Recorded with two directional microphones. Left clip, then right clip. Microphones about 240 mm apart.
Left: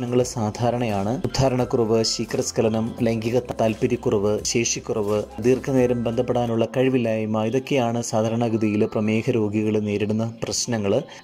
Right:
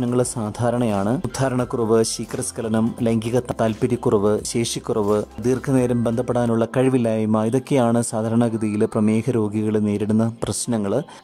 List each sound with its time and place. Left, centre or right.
0.1 s speech: centre